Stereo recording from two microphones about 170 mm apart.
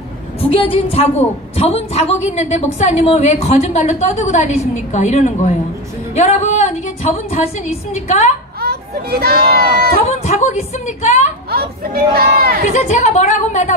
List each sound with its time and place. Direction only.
0.4 s a woman's voice: 35° left (ahead or behind)
8.5 s children playing: 65° right (ahead or behind)
9.8 s a sound: 65° right (ahead or behind)
10.1 s speech: 40° left (ahead or behind)
11.5 s speech: 60° right (ahead or behind)
12.7 s speech: 40° left (ahead or behind)